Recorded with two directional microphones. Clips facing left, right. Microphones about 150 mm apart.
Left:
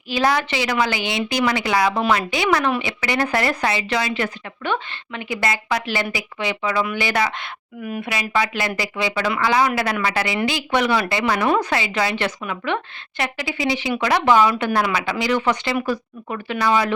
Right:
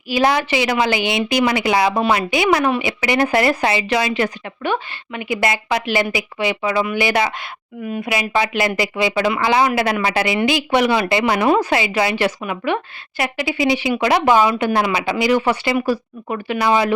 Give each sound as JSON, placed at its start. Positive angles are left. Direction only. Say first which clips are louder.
{"t": 0.1, "sound": "speech", "louder": "right 3 dB", "side_deg": -15}
{"t": 16.6, "sound": "speech", "louder": "right 2 dB", "side_deg": -25}